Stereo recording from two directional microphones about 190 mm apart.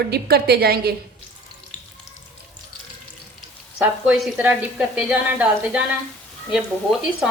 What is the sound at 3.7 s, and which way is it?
A woman's voice, 5° right (ahead or behind).